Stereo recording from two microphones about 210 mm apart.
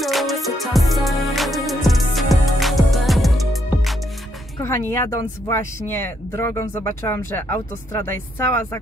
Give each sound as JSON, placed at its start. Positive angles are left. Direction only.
{"t": 0.0, "sound": "music", "side_deg": 0}
{"t": 4.6, "sound": "speech", "side_deg": 10}